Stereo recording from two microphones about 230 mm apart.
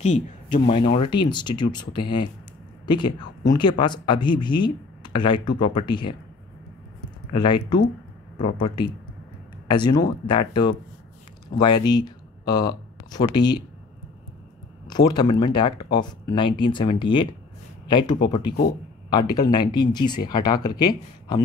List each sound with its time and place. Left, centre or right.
0.0 s speech: left
7.3 s speech: centre
14.9 s speech: centre